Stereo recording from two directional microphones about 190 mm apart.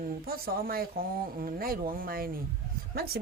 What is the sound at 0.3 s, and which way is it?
A woman's voice, 50° right (ahead or behind).